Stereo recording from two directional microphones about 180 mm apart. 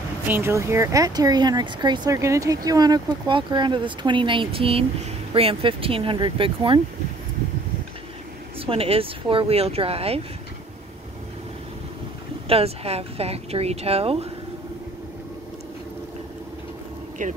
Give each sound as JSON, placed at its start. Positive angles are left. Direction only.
{"t": 0.3, "sound": "speech", "side_deg": -15}
{"t": 8.5, "sound": "a woman's voice", "side_deg": -30}
{"t": 12.4, "sound": "a woman's voice", "side_deg": -35}
{"t": 17.2, "sound": "speech", "side_deg": -45}